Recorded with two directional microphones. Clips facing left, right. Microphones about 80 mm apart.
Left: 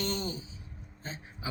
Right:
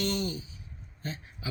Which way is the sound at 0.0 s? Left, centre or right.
Left.